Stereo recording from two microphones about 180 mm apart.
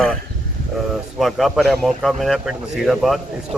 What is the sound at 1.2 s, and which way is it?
Speech, centre (ahead or behind).